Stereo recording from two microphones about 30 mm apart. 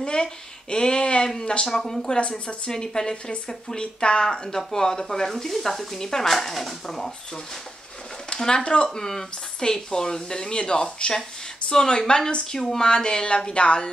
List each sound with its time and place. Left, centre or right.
0.0 s a sound: left
1.4 s speech: left
1.8 s speech: centre
2.0 s speech: left
2.7 s speech: left
4.3 s speech: centre
6.5 s speech: centre
8.4 s speech: left
8.6 s speech: left
8.9 s speech: centre